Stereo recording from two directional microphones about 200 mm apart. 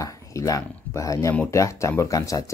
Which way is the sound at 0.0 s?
15° left (ahead or behind).